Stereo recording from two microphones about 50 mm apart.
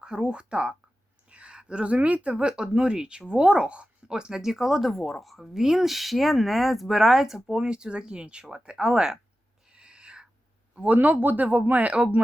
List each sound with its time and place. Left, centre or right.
0.0 s speech: centre
9.6 s owl: centre
10.8 s speech: right